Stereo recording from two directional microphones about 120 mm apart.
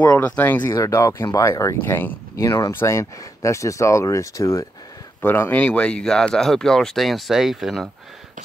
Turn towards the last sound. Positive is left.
turn(degrees=0)  # may be behind; listen again after turning